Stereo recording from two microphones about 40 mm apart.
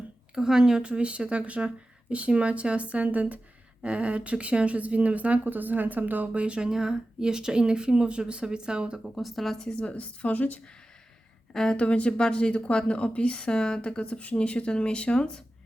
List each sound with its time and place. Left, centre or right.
0.3 s speech: centre
0.8 s speech: right
3.8 s speech: right
6.3 s speech: right
6.6 s speech: centre
9.1 s a woman's voice: centre
9.7 s a woman's voice: left
11.5 s speech: centre
11.8 s speech: left